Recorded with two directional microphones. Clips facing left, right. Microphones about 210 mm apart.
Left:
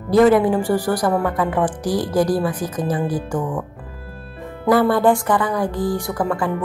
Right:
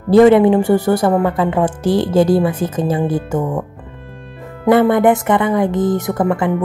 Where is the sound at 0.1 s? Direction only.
25° right (ahead or behind).